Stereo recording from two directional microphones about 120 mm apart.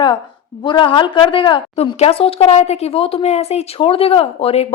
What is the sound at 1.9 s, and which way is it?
A woman's voice, 55° left (ahead or behind).